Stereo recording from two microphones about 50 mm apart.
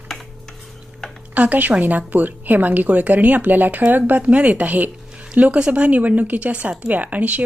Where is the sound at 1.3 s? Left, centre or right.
Right.